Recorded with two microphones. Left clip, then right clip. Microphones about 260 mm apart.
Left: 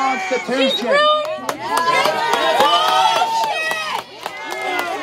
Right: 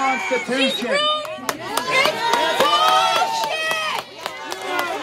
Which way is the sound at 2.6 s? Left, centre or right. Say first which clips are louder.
Right 1 dB; centre.